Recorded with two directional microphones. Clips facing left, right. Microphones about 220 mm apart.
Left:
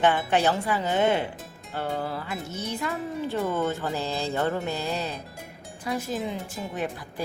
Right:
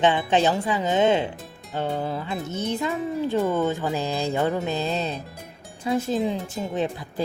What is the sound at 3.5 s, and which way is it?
A woman's voice, 15° right (ahead or behind).